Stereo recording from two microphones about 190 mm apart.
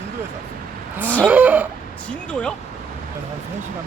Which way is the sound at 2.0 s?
5° left (ahead or behind).